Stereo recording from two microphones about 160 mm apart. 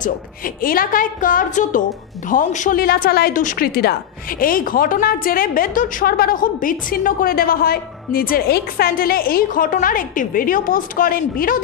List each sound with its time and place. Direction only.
0.0 s a woman's voice: 60° left (ahead or behind)